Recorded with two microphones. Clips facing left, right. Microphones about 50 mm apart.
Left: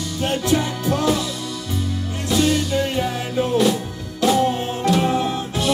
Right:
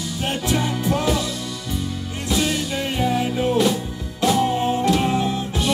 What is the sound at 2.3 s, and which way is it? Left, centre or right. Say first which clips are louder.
Music: left 3 dB; centre.